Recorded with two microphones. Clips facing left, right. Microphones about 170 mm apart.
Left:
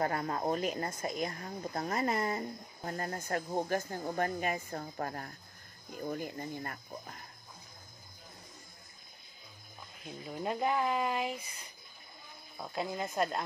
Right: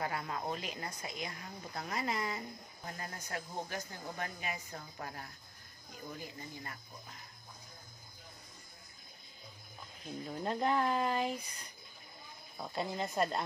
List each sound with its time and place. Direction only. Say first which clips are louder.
0.0 s speech: left 6 dB; 45° left (ahead or behind)
10.0 s speech: left 1 dB; 10° left (ahead or behind)
12.5 s speech: left 1 dB; 5° left (ahead or behind)